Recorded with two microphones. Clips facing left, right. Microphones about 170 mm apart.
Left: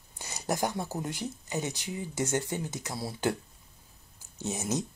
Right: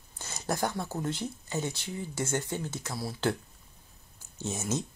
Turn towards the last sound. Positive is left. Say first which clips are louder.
# left 1 dB
turn(degrees=15)  # may be behind; listen again after turning